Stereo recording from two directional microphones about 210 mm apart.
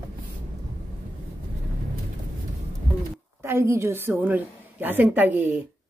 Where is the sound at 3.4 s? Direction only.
10° right (ahead or behind).